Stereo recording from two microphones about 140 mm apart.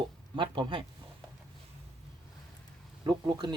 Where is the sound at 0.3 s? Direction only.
35° right (ahead or behind).